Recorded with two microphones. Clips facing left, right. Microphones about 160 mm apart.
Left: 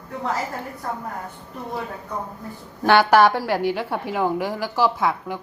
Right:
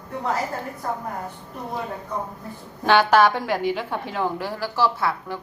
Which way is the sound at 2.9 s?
10° left (ahead or behind).